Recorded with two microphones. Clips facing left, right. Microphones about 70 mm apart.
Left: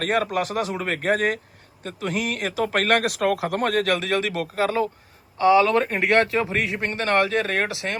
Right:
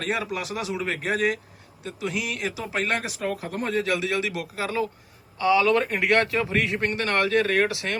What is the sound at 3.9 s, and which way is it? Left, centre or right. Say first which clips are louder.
Speech: left 3 dB; left.